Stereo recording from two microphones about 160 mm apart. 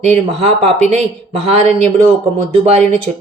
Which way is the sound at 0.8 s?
40° right (ahead or behind).